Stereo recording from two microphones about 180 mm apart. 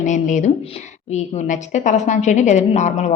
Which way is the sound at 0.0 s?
45° left (ahead or behind).